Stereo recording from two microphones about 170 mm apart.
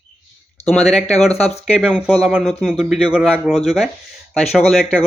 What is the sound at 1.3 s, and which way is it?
Speech, 35° left (ahead or behind).